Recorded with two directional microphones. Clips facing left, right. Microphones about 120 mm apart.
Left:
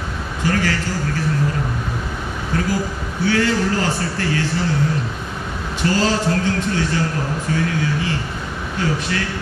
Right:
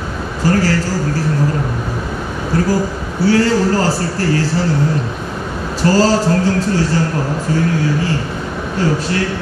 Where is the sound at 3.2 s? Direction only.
40° right (ahead or behind).